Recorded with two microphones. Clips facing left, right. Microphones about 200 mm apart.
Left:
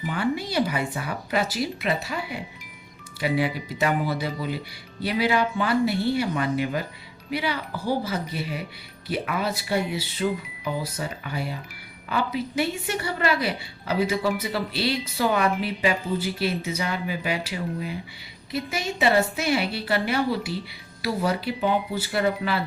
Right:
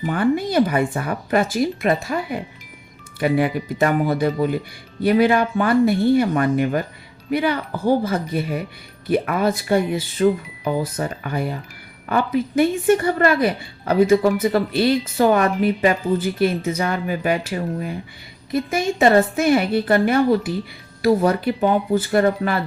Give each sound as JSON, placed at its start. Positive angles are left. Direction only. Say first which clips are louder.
{"t": 0.0, "sound": "speech", "louder": "right 7 dB", "side_deg": -50}